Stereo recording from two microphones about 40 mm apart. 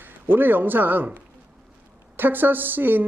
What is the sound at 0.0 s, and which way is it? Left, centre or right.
A man's voice, right.